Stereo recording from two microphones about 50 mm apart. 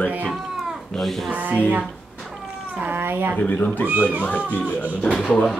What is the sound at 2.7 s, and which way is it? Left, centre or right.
Speech, right.